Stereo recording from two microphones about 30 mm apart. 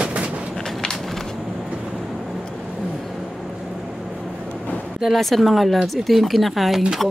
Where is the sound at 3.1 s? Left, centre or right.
Centre.